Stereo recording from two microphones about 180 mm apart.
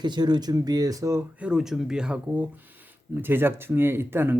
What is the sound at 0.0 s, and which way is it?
Speech, 25° right (ahead or behind).